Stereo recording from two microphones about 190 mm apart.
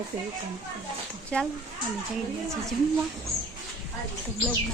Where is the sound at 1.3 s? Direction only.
5° left (ahead or behind).